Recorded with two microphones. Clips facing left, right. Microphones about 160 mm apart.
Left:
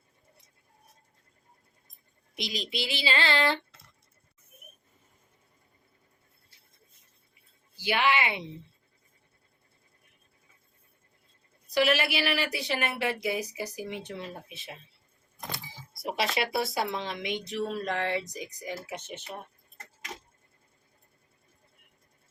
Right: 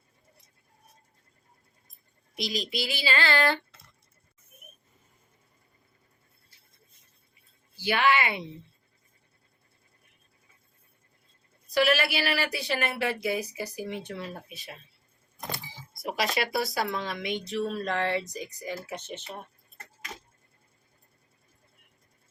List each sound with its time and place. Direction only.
2.9 s speech: 20° left (ahead or behind)
7.8 s a woman's voice: 15° left (ahead or behind)
11.7 s speech: 20° left (ahead or behind)
16.0 s a woman's voice: 30° left (ahead or behind); by 19.3 s 10° left (ahead or behind)